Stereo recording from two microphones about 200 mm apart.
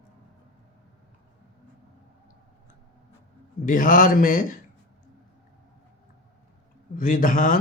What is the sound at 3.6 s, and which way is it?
Speech, 40° left (ahead or behind).